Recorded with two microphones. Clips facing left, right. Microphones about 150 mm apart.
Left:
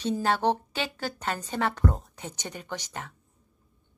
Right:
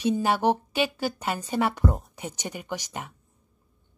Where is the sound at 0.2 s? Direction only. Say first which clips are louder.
Right 2 dB; 10° right (ahead or behind).